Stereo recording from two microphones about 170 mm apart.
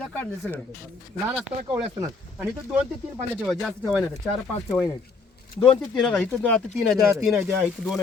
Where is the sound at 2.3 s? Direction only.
10° right (ahead or behind).